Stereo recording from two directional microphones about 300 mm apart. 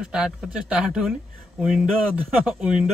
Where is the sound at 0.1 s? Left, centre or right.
Centre.